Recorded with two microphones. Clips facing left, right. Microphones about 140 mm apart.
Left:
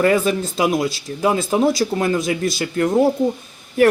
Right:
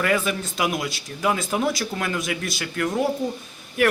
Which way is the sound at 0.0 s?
30° left (ahead or behind).